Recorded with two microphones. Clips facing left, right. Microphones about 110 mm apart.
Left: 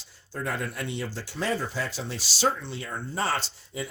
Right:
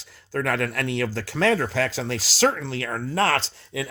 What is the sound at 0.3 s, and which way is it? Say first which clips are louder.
Speech: right 7 dB; 90° right.